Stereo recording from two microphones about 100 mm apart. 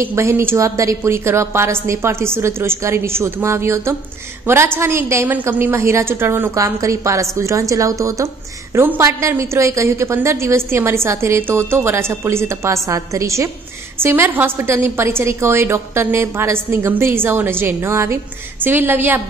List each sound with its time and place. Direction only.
0.0 s a woman's voice: 25° right (ahead or behind)